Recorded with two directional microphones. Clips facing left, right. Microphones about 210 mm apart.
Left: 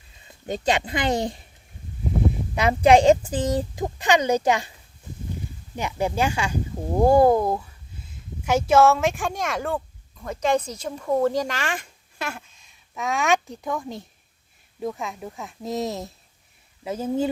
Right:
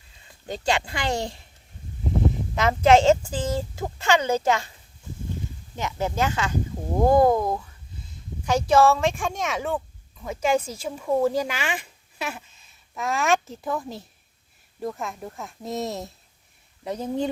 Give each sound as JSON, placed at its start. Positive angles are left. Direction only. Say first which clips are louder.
{"t": 0.4, "sound": "speech", "louder": "left 2 dB", "side_deg": 20}
{"t": 2.6, "sound": "speech", "louder": "left 1 dB", "side_deg": 15}
{"t": 5.7, "sound": "speech", "louder": "left 2 dB", "side_deg": 15}